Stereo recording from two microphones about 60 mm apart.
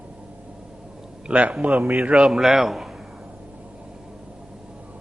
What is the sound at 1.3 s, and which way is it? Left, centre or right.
Speech, right.